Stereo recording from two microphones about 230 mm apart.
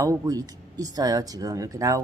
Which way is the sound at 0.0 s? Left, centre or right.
Centre.